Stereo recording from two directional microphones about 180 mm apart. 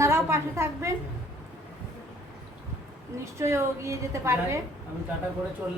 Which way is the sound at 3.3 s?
15° right (ahead or behind).